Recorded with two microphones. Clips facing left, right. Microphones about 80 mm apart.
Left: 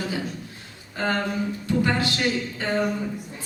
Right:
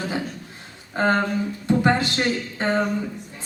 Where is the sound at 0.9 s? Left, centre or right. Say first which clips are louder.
Right 4 dB; right.